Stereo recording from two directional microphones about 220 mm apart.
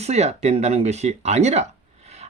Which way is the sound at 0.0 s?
30° right (ahead or behind).